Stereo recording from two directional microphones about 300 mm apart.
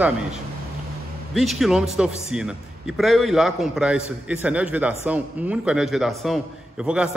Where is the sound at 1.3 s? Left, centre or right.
Centre.